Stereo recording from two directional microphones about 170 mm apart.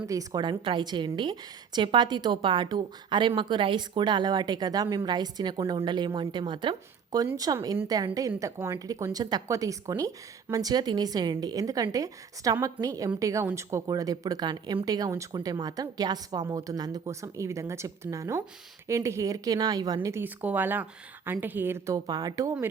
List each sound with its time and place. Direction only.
0.1 s a woman's voice: 20° right (ahead or behind)